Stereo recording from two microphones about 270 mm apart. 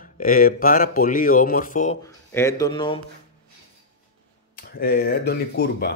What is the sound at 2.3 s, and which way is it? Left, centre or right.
Speech, centre.